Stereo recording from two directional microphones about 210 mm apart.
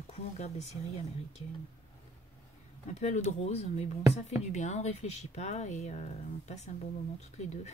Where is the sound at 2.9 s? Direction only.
30° left (ahead or behind).